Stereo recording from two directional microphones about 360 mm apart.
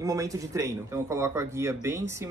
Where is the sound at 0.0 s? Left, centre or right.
Centre.